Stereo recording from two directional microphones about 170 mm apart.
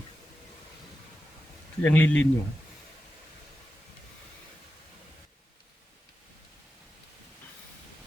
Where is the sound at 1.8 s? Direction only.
10° left (ahead or behind).